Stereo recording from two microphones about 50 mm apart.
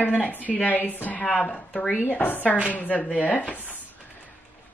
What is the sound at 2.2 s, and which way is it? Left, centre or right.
Speech, left.